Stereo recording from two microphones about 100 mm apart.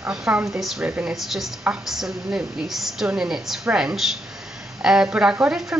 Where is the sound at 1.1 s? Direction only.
Centre (ahead or behind).